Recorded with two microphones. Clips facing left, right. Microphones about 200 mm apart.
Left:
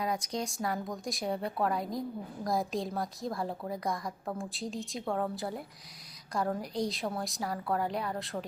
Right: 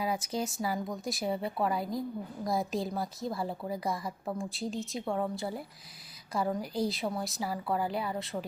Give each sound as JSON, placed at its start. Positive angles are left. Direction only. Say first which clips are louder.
{"t": 0.0, "sound": "speech", "louder": "right 1 dB", "side_deg": -5}